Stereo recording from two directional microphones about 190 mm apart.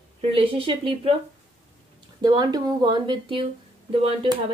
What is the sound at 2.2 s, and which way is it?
Speech, 20° right (ahead or behind).